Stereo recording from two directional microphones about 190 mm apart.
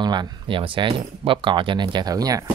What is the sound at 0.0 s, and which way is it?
Speech, 20° right (ahead or behind).